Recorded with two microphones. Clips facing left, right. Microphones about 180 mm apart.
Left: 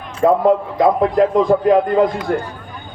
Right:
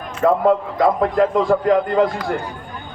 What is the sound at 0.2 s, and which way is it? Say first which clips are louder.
A man's voice: left 2 dB; 20° left (ahead or behind).